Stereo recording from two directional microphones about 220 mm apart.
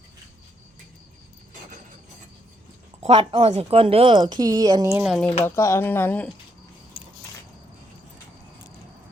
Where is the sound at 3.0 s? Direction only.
25° right (ahead or behind).